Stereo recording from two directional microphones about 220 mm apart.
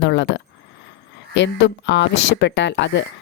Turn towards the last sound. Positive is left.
turn(degrees=55)  # may be behind; listen again after turning